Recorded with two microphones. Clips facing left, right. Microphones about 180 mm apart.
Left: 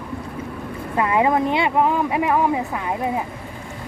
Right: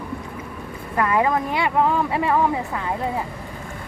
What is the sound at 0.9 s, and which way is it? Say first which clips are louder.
Speech: left 2 dB; 20° left (ahead or behind).